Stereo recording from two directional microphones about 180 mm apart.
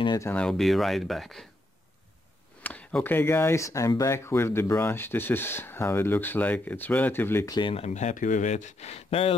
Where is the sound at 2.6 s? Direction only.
10° left (ahead or behind).